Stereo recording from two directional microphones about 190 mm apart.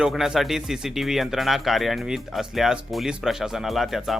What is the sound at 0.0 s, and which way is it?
Speech, centre (ahead or behind).